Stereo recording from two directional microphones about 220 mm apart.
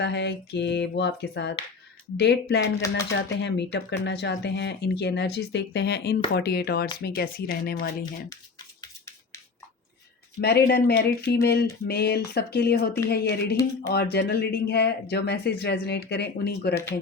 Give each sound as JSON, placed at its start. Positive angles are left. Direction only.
{"t": 0.0, "sound": "speech", "side_deg": 50}
{"t": 8.8, "sound": "a sound", "side_deg": 10}
{"t": 10.4, "sound": "speech", "side_deg": 45}